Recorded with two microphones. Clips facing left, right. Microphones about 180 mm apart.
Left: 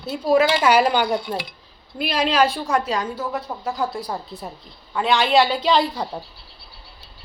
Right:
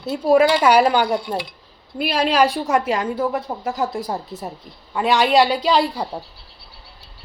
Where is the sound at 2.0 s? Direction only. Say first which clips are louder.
Right 2 dB; 10° right (ahead or behind).